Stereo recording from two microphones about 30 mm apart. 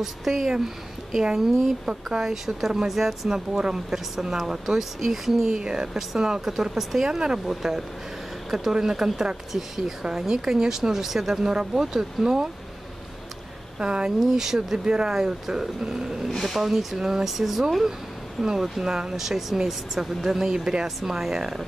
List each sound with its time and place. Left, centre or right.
0.0 s speech: centre
1.2 s speech: centre
3.3 s speech: right
5.6 s speech: right
6.6 s speech: centre
7.1 s speech: right
7.4 s speech: centre
11.4 s speech: right
13.7 s speech: right
14.2 s speech: centre
16.3 s speech: centre
16.5 s speech: centre
18.4 s speech: centre
18.9 s speech: right